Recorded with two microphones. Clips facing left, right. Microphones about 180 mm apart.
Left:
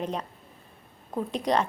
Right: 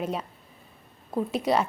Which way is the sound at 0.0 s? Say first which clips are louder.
Right 1 dB; 5° right (ahead or behind).